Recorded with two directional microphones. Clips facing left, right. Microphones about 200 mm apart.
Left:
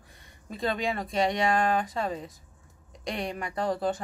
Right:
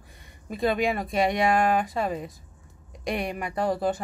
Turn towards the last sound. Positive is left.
turn(degrees=-10)  # may be behind; listen again after turning